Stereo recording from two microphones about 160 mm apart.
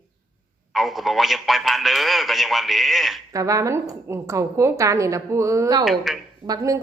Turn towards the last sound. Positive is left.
turn(degrees=-20)  # may be behind; listen again after turning